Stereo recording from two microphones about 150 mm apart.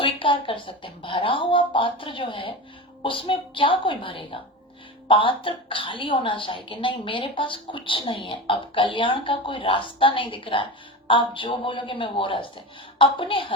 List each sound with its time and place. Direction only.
0.0 s a woman's voice: 35° left (ahead or behind)